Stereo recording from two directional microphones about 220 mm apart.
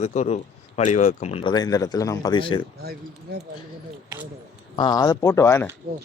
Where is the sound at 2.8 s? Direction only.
45° right (ahead or behind).